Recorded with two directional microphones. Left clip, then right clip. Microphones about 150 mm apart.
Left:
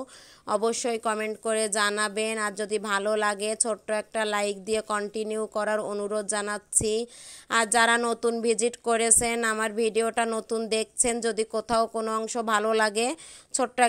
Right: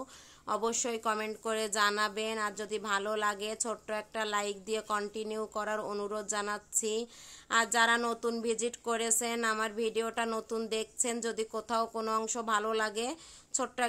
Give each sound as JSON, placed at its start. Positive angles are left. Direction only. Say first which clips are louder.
{"t": 0.5, "sound": "speech", "louder": "left 7 dB", "side_deg": 35}